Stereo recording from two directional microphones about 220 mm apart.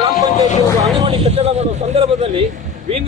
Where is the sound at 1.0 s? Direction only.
25° right (ahead or behind).